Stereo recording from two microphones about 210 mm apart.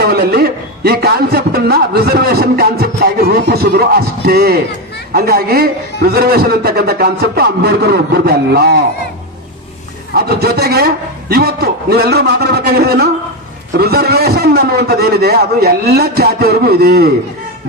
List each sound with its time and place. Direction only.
0.0 s a man's voice: 50° right (ahead or behind)
10.2 s a man's voice: 50° right (ahead or behind)